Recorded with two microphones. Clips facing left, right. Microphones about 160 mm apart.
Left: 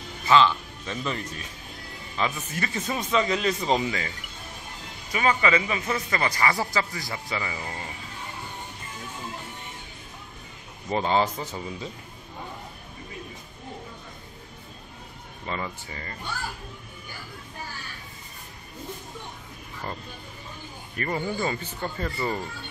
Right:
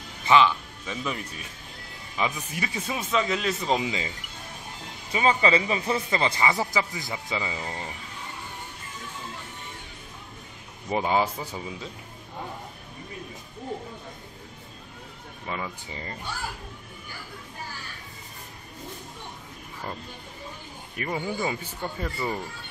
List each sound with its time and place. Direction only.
0.2 s speech: 15° right (ahead or behind)
3.8 s speech: 20° right (ahead or behind)
5.1 s speech: 25° right (ahead or behind)
10.9 s speech: 10° right (ahead or behind)
15.4 s speech: 5° right (ahead or behind)
15.9 s speech: 20° right (ahead or behind)
20.9 s speech: 5° right (ahead or behind)